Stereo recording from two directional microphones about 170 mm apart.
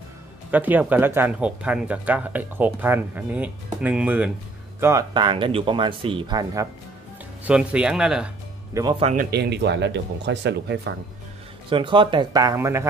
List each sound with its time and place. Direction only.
0.5 s speech: 10° right (ahead or behind)
5.1 s speech: 30° right (ahead or behind)
7.4 s speech: 5° right (ahead or behind)
9.0 s speech: 50° right (ahead or behind)
9.4 s speech: 80° right
11.7 s speech: 30° right (ahead or behind)